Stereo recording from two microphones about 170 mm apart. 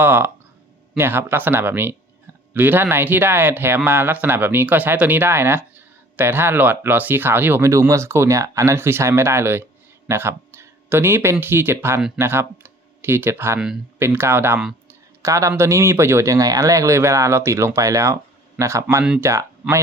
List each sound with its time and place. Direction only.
0.0 s speech: 10° right (ahead or behind)
12.2 s speech: 15° right (ahead or behind)